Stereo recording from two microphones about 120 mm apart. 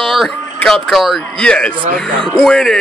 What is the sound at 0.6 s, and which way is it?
Speech, 5° left (ahead or behind).